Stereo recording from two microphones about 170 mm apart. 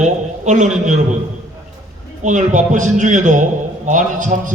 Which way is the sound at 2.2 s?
45° right (ahead or behind).